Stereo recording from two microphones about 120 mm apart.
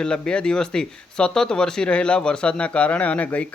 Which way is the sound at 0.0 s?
5° left (ahead or behind).